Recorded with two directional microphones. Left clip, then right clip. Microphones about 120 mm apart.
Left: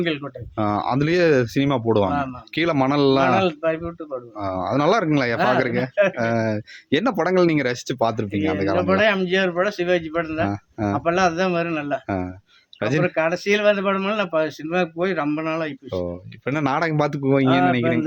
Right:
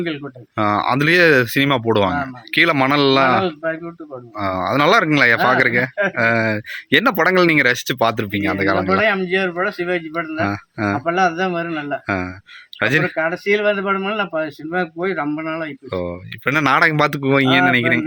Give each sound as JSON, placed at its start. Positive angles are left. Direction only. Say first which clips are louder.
{"t": 0.5, "sound": "speech", "louder": "right 5 dB", "side_deg": 0}
{"t": 3.4, "sound": "speech", "louder": "even", "side_deg": 35}
{"t": 4.4, "sound": "speech", "louder": "right 5 dB", "side_deg": 0}
{"t": 8.9, "sound": "speech", "louder": "right 2 dB", "side_deg": 35}
{"t": 10.4, "sound": "speech", "louder": "right 4 dB", "side_deg": 0}
{"t": 11.0, "sound": "speech", "louder": "right 1 dB", "side_deg": 35}
{"t": 12.0, "sound": "speech", "louder": "right 4 dB", "side_deg": 0}
{"t": 13.1, "sound": "speech", "louder": "right 2 dB", "side_deg": 35}
{"t": 16.4, "sound": "speech", "louder": "right 8 dB", "side_deg": -5}